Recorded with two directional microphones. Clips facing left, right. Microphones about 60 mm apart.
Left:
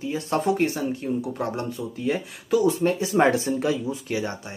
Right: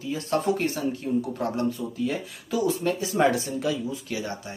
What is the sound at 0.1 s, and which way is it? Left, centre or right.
Speech, left.